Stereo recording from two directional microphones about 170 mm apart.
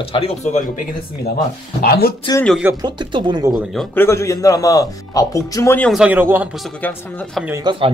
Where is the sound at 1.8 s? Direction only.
60° left (ahead or behind).